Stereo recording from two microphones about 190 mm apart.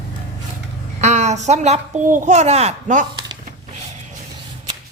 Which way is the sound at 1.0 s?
35° right (ahead or behind).